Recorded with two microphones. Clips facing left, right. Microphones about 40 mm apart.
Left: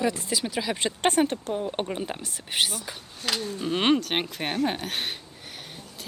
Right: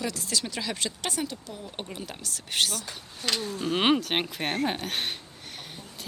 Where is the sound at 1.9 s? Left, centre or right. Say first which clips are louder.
Left 6 dB; left.